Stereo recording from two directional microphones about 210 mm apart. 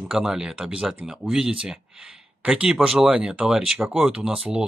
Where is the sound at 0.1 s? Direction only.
Centre (ahead or behind).